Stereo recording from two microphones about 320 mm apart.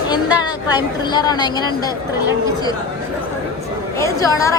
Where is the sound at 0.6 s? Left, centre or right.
Centre.